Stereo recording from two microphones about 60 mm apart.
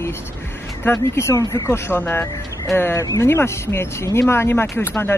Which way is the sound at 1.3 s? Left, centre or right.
Left.